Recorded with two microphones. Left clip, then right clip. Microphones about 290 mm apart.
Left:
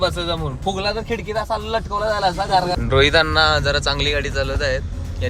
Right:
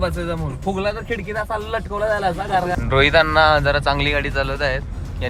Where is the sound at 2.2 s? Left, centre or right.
Centre.